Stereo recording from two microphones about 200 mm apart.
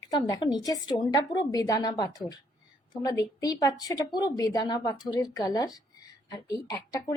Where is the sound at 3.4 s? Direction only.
20° left (ahead or behind).